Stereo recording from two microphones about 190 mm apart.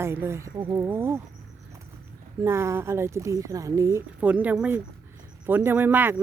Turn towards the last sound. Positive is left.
turn(degrees=-10)  # may be behind; listen again after turning